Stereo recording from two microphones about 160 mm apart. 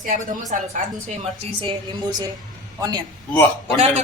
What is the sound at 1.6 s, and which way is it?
Speech, 25° right (ahead or behind).